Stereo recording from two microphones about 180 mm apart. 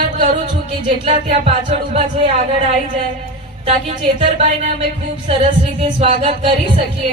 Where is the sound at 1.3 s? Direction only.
35° right (ahead or behind).